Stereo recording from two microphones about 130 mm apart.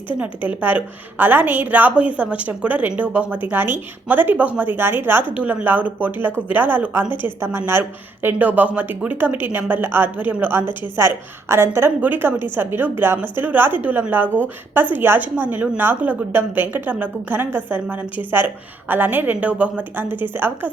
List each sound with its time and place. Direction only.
0.2 s a woman's voice: 15° right (ahead or behind)
14.3 s a woman's voice: 10° left (ahead or behind)
14.8 s a woman's voice: 15° right (ahead or behind)